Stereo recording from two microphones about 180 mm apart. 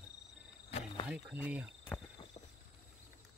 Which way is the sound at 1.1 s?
10° right (ahead or behind).